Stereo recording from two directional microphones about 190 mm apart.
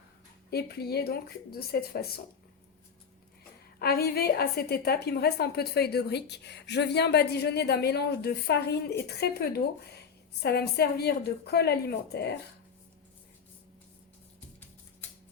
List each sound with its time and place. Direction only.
0.5 s a woman's voice: 55° left (ahead or behind)
3.8 s a woman's voice: 55° left (ahead or behind)